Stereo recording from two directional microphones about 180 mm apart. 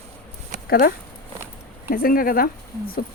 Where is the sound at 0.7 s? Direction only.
55° left (ahead or behind).